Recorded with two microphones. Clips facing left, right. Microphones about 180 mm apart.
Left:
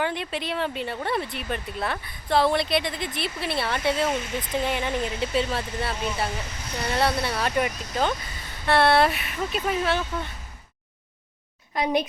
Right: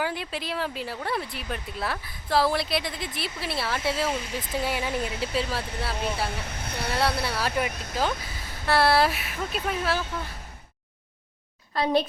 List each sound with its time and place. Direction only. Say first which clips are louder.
0.0 s a woman's voice: left 2 dB; 5° right (ahead or behind)
6.3 s speech: left 1 dB; 60° right (ahead or behind)
7.3 s a woman's voice: left 2 dB; centre (ahead or behind)
11.7 s a child's voice: even; 15° left (ahead or behind)